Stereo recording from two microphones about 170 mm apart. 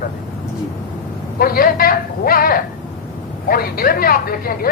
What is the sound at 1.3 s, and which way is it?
Speech, 60° left (ahead or behind).